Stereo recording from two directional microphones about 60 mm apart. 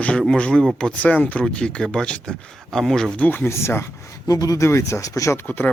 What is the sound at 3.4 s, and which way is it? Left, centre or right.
Speech, left.